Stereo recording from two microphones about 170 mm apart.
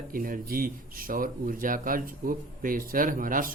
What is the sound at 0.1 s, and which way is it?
Speech, 55° right (ahead or behind).